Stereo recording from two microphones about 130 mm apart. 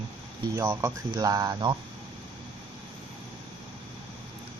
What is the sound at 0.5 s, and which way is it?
Speech, 20° right (ahead or behind).